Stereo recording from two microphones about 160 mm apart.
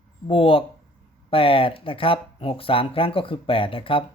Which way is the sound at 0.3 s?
35° left (ahead or behind).